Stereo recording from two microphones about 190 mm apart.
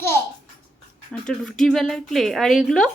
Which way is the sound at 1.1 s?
5° left (ahead or behind).